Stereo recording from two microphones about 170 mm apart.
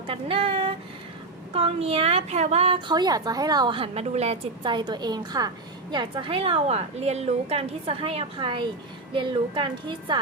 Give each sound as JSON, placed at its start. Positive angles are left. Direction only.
{"t": 0.1, "sound": "a woman's voice", "side_deg": -30}
{"t": 2.7, "sound": "a woman's voice", "side_deg": -25}